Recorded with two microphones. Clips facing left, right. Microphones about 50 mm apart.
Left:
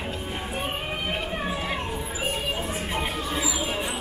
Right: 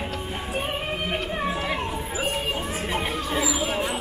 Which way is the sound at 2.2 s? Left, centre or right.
Right.